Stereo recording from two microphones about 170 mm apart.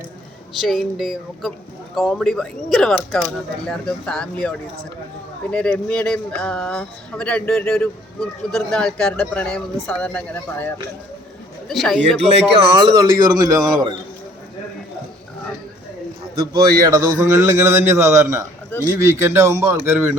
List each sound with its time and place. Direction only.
0.6 s speech: centre (ahead or behind)
11.7 s speech: centre (ahead or behind)
12.5 s speech: 25° right (ahead or behind)
16.8 s a man's voice: 20° right (ahead or behind)